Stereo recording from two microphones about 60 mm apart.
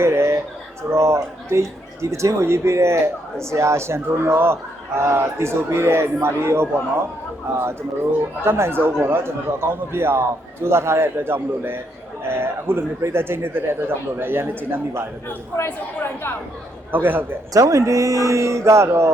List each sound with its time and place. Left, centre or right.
0.0 s a sound: right
0.9 s a man's voice: right
16.9 s speech: right
17.5 s a man's voice: right